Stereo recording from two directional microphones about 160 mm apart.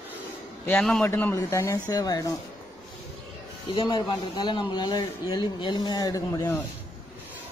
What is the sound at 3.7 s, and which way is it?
Speech, 30° left (ahead or behind).